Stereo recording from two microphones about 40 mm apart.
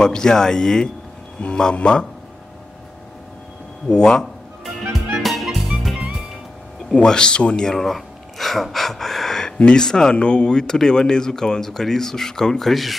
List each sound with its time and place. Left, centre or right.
0.0 s speech: centre
3.9 s speech: centre
4.9 s music: centre
6.9 s speech: left
7.7 s a sound: centre
8.7 s speech: centre